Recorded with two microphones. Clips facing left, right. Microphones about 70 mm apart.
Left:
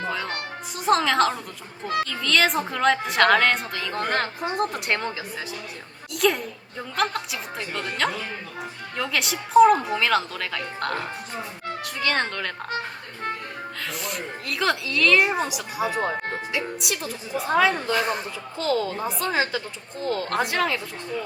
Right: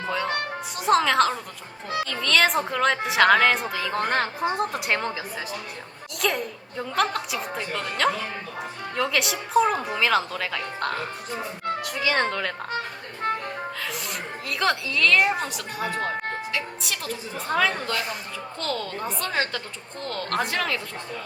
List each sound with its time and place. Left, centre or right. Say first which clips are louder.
0.1 s music: right 2 dB; centre
0.8 s a woman's voice: even; centre
4.0 s speech: even; centre
4.5 s a woman's voice: even; centre
6.1 s a woman's voice: left 4 dB; centre
13.9 s a woman's voice: left 1 dB; centre